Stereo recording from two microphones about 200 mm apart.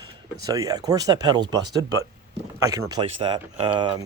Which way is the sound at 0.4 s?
15° right (ahead or behind).